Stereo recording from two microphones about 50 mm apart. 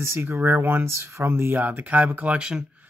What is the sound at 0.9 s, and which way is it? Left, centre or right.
Speech, right.